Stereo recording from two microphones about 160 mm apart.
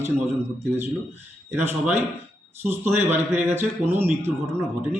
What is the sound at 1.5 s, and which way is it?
A man's voice, 15° right (ahead or behind).